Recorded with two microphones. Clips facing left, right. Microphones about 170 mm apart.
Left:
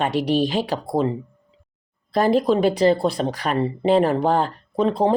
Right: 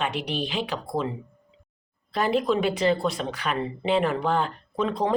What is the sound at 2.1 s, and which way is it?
Speech, 40° left (ahead or behind).